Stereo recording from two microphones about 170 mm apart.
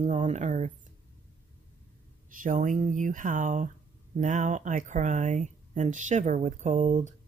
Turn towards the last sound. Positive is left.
turn(degrees=-45)  # may be behind; listen again after turning